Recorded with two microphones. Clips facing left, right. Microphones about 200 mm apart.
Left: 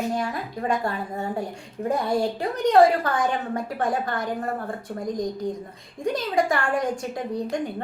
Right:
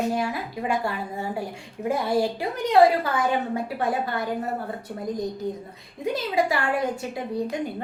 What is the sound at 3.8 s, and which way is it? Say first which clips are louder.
Speech: left 1 dB; 45° left (ahead or behind).